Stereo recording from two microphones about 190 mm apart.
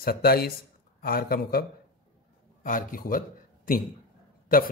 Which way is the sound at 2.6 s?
45° left (ahead or behind).